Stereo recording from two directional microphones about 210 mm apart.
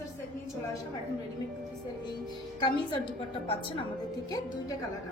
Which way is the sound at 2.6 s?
25° left (ahead or behind).